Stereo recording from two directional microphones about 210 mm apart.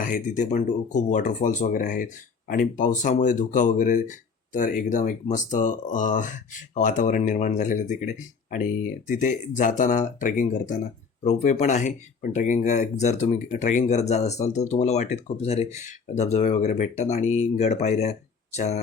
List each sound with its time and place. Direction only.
0.0 s speech: 35° left (ahead or behind)